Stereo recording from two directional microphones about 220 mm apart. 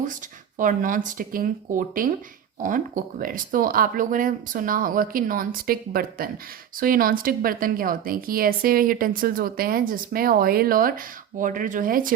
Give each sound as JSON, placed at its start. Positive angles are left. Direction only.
{"t": 0.6, "sound": "a woman's voice", "side_deg": -35}